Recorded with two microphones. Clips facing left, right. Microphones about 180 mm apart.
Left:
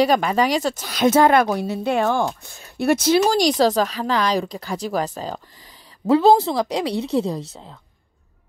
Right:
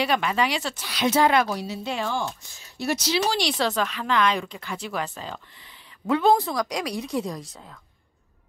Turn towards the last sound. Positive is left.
turn(degrees=25)  # may be behind; listen again after turning